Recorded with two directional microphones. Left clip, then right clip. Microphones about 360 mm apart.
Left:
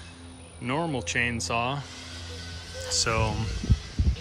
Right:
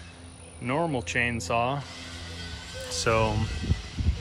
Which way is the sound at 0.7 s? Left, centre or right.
Centre.